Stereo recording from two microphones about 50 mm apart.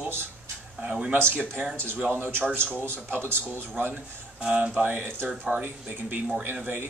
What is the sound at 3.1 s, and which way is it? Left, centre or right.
Speech, right.